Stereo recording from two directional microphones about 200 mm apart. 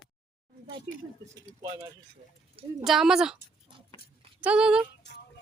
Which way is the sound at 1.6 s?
15° right (ahead or behind).